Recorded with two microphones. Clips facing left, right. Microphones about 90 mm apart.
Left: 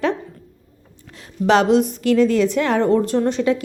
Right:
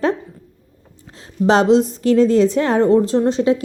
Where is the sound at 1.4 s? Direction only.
30° right (ahead or behind).